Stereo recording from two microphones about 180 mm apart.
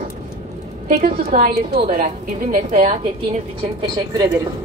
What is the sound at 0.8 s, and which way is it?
A woman's voice, 50° right (ahead or behind).